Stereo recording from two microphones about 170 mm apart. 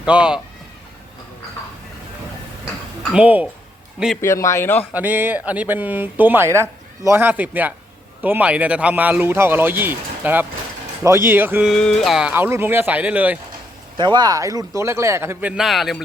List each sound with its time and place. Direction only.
0.0 s speech: 5° right (ahead or behind)
3.1 s speech: 10° right (ahead or behind)
4.2 s a man's voice: 15° left (ahead or behind)
4.9 s speech: 10° right (ahead or behind)
11.7 s speech: 5° left (ahead or behind)
13.9 s speech: 25° right (ahead or behind); by 16.0 s centre (ahead or behind)